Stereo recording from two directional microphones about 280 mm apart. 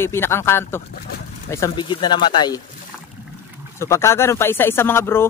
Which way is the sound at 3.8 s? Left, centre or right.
Centre.